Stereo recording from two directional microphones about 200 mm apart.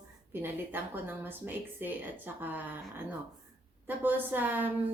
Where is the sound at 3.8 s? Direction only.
10° right (ahead or behind).